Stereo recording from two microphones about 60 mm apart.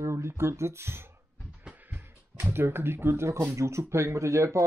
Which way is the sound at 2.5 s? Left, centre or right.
Right.